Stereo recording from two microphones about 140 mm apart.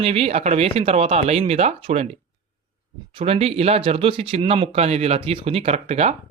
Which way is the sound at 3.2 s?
45° right (ahead or behind).